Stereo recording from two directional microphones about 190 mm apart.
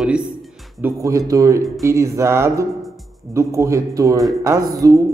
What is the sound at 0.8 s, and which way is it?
Speech, 15° right (ahead or behind).